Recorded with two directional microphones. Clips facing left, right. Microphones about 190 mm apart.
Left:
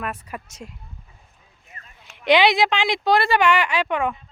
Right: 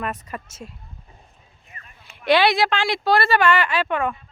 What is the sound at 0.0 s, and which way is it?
Speech, 10° left (ahead or behind).